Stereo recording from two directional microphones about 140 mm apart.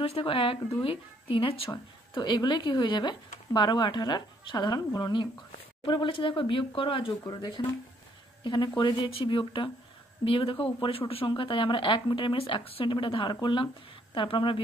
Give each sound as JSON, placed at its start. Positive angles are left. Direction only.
{"t": 0.0, "sound": "speech", "side_deg": 40}